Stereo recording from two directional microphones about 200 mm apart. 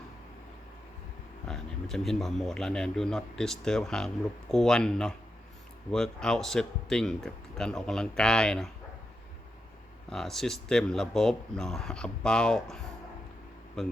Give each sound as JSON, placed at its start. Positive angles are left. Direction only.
{"t": 1.5, "sound": "speech", "side_deg": 0}
{"t": 10.1, "sound": "speech", "side_deg": 0}